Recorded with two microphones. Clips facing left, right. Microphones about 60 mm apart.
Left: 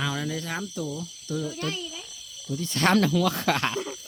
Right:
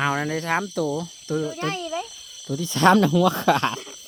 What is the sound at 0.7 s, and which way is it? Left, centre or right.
Speech, right.